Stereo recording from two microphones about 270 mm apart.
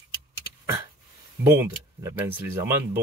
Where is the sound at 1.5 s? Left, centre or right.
Centre.